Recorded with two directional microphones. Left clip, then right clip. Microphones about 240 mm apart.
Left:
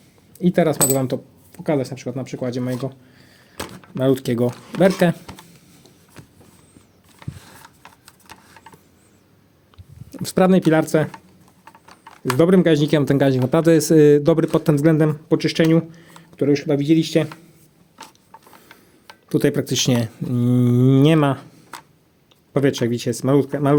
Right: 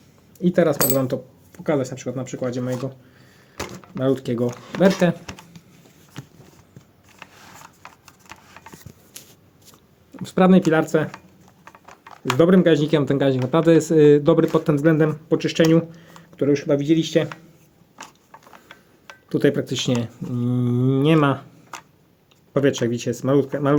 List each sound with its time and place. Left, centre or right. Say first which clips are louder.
0.3 s speech: even; left
4.0 s speech: left 3 dB; left
8.3 s a sound: right 1 dB; centre
10.2 s speech: left 1 dB; left
12.4 s speech: even; left
17.9 s a sound: even; centre
19.3 s speech: left 1 dB; left
22.5 s speech: left 1 dB; left